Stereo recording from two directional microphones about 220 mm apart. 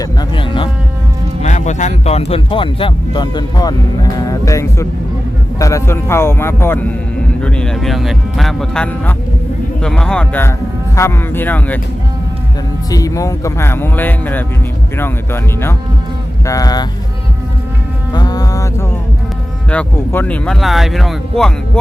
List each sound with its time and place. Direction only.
0.0 s speech: 20° left (ahead or behind)
1.4 s speech: 35° left (ahead or behind); by 11.8 s 10° left (ahead or behind)
12.9 s speech: 15° left (ahead or behind)
18.1 s music: 20° left (ahead or behind)
19.7 s speech: 5° left (ahead or behind)